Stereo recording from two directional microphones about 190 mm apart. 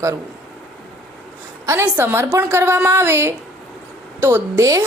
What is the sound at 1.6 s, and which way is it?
A woman's voice, 10° right (ahead or behind).